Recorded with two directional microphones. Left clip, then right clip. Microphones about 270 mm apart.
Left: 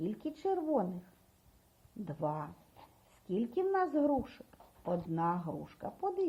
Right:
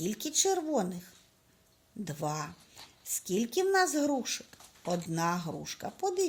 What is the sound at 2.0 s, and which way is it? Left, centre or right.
A woman's voice, right.